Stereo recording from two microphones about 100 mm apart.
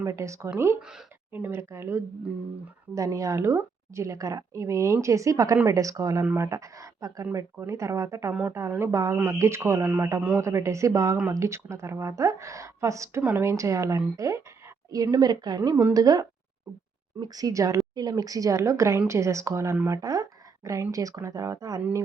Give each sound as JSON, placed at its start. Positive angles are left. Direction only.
{"t": 0.0, "sound": "a woman's voice", "side_deg": -30}
{"t": 0.8, "sound": "speech", "side_deg": -5}
{"t": 1.3, "sound": "a woman's voice", "side_deg": -20}
{"t": 10.2, "sound": "speech", "side_deg": -15}
{"t": 10.4, "sound": "a woman's voice", "side_deg": -30}